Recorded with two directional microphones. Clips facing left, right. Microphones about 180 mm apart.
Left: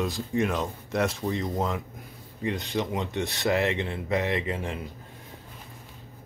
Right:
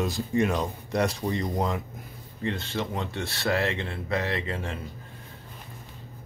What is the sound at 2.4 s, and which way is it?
Speech, 15° left (ahead or behind).